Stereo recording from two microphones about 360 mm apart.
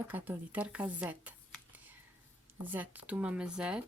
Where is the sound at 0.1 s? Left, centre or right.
Centre.